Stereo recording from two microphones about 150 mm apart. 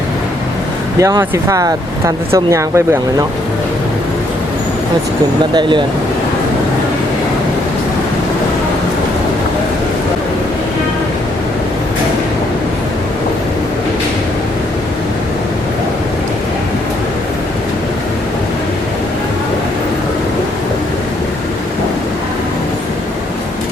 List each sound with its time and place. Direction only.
0.9 s speech: 20° right (ahead or behind)
5.5 s speech: 30° right (ahead or behind)